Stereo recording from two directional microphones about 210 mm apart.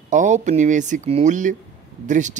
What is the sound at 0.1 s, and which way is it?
Speech, 35° right (ahead or behind).